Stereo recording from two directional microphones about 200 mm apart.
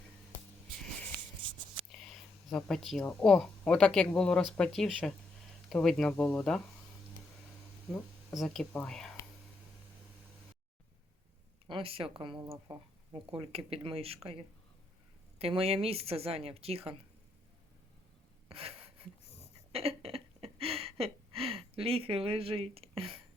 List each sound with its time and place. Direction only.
1.9 s a sound: 5° left (ahead or behind)
3.1 s speech: 5° left (ahead or behind)
7.9 s speech: centre (ahead or behind)
11.7 s a woman's voice: 30° right (ahead or behind)
15.4 s a woman's voice: 30° right (ahead or behind)
18.4 s a sound: 30° right (ahead or behind)